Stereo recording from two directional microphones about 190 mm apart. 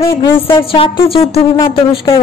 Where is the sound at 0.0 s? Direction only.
25° left (ahead or behind).